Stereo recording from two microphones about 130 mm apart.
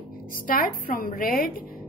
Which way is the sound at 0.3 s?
90° left.